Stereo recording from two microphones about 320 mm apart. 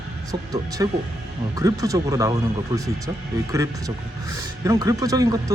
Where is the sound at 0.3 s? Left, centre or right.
Centre.